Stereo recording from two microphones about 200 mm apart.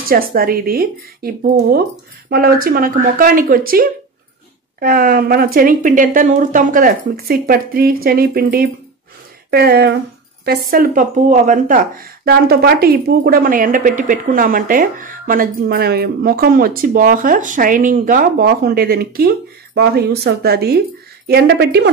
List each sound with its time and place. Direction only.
0.1 s a woman's voice: 45° right (ahead or behind)